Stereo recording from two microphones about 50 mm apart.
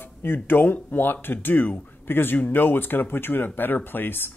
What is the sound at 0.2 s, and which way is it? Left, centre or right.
Speech, left.